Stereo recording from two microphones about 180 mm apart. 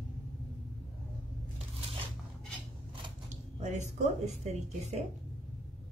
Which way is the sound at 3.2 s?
40° right (ahead or behind).